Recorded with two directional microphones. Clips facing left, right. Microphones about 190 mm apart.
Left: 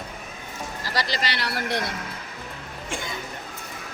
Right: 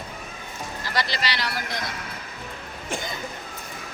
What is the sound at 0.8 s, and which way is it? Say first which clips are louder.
Speech: even; 35° left (ahead or behind).